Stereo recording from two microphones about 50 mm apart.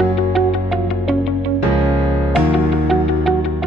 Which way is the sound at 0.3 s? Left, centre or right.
Centre.